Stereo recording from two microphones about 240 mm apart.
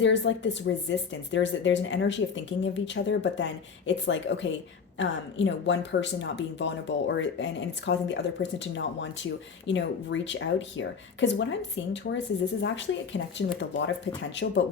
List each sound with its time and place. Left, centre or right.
0.0 s speech: left